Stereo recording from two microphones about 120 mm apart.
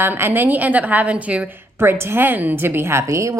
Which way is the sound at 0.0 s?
20° right (ahead or behind).